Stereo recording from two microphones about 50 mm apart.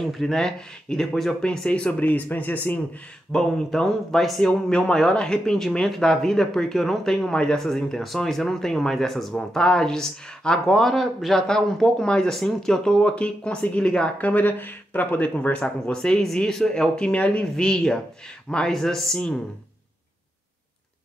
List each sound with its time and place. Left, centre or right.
0.0 s speech: centre; by 2.8 s left
3.3 s speech: centre
10.7 s speech: centre
14.1 s speech: left
15.5 s speech: centre
17.6 s speech: centre
18.7 s speech: centre